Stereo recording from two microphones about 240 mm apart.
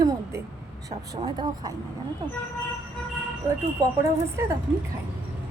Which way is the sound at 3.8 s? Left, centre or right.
Centre.